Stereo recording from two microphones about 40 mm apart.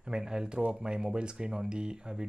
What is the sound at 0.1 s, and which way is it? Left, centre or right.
Speech, centre.